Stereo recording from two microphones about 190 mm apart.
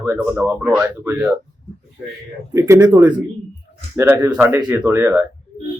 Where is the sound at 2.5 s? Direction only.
15° right (ahead or behind).